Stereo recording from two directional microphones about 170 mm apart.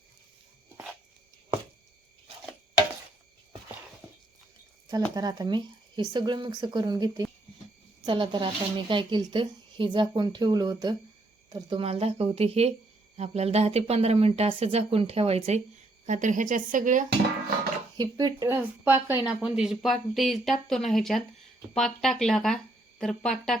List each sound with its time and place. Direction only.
5.1 s a woman's voice: 20° right (ahead or behind)
11.8 s speech: 35° right (ahead or behind)
17.9 s speech: 25° right (ahead or behind); by 23.6 s 5° left (ahead or behind)